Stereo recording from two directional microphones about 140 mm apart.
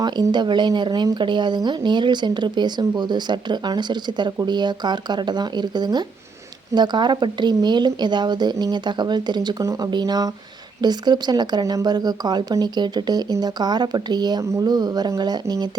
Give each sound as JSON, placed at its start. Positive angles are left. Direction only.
{"t": 0.0, "sound": "a woman's voice", "side_deg": -30}